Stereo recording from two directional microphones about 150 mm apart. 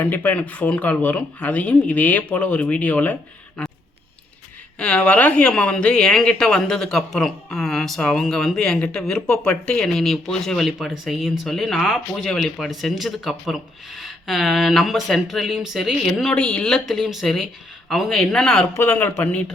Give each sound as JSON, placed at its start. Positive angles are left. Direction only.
{"t": 0.0, "sound": "speech", "side_deg": 10}
{"t": 3.6, "sound": "a sound", "side_deg": 10}
{"t": 4.8, "sound": "speech", "side_deg": 5}
{"t": 18.7, "sound": "speech", "side_deg": 15}